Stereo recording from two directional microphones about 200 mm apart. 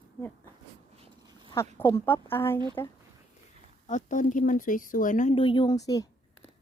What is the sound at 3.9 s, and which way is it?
Speech, 40° left (ahead or behind).